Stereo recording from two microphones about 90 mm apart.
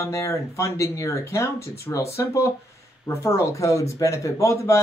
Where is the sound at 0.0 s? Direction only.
35° left (ahead or behind).